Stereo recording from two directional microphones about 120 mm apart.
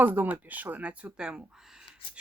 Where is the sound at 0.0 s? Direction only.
15° right (ahead or behind).